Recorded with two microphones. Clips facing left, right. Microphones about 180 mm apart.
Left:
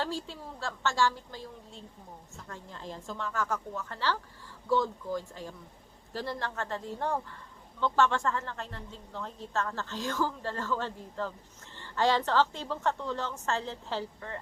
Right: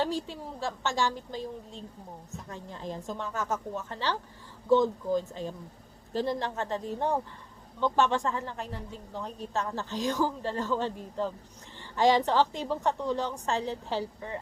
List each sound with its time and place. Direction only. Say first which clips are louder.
0.0 s a woman's voice: right 4 dB; 15° right (ahead or behind)